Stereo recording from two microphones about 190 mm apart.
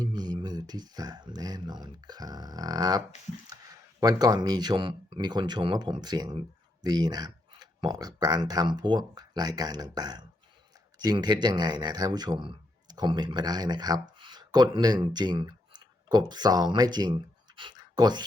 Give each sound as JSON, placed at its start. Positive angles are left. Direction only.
{"t": 0.0, "sound": "speech", "side_deg": -20}
{"t": 4.0, "sound": "speech", "side_deg": -20}